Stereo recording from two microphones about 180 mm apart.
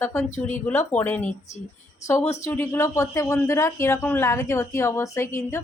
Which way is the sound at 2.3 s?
15° left (ahead or behind).